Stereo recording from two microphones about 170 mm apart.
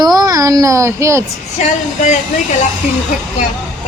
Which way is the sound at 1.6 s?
45° left (ahead or behind).